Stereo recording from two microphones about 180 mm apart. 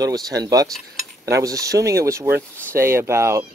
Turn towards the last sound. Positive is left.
turn(degrees=-15)  # may be behind; listen again after turning